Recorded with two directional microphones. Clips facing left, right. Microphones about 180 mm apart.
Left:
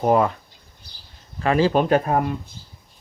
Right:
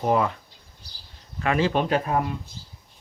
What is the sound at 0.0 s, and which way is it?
Speech, 45° left (ahead or behind).